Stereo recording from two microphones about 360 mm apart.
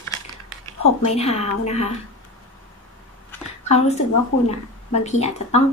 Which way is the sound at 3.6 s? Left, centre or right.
Centre.